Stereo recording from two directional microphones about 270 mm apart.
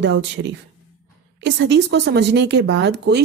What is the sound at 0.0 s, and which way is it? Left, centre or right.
A woman's voice, right.